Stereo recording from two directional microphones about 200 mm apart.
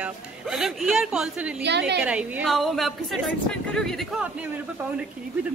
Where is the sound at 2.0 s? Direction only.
5° right (ahead or behind).